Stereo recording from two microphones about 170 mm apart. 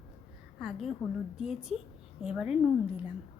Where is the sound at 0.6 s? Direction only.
Centre (ahead or behind).